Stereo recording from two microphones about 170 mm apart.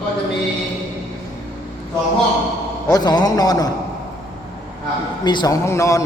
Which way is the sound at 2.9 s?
25° left (ahead or behind).